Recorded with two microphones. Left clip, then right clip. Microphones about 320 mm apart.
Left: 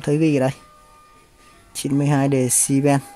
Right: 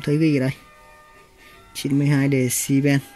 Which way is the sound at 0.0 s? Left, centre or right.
Centre.